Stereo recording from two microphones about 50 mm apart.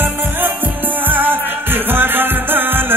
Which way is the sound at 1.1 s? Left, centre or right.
Right.